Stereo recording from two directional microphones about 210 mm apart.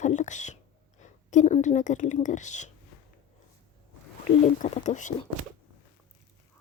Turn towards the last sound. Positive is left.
turn(degrees=35)  # may be behind; listen again after turning